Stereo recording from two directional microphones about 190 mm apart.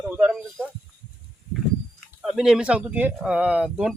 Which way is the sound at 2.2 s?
5° right (ahead or behind).